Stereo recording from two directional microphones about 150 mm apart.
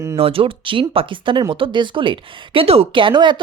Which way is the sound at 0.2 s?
40° right (ahead or behind).